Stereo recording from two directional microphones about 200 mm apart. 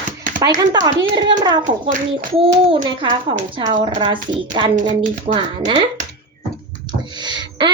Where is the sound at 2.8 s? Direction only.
25° right (ahead or behind).